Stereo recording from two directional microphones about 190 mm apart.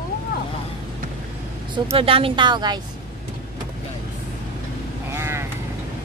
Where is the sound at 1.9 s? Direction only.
30° right (ahead or behind).